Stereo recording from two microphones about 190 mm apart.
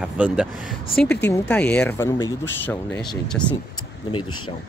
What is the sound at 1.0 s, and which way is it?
Speech, 10° left (ahead or behind).